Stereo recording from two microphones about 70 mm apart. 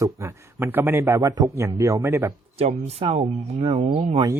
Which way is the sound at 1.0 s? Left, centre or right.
Right.